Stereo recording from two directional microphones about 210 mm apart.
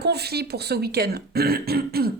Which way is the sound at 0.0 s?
50° right (ahead or behind).